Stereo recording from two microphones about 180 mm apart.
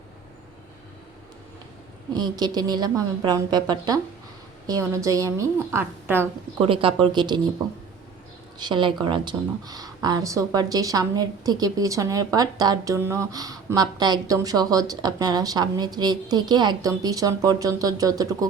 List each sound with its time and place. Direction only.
2.1 s a woman's voice: 20° right (ahead or behind)
6.6 s speech: 30° right (ahead or behind)
8.5 s speech: 25° right (ahead or behind)